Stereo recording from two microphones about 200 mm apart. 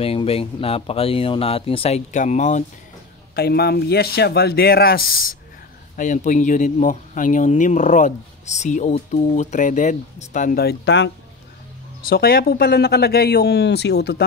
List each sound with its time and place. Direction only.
0.0 s speech: 30° left (ahead or behind)
3.3 s speech: 50° left (ahead or behind)
12.1 s speech: 50° left (ahead or behind)